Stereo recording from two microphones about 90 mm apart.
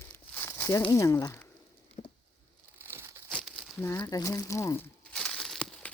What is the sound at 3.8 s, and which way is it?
Speech, 30° left (ahead or behind).